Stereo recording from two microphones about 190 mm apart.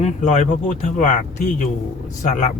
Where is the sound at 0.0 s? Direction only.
40° left (ahead or behind).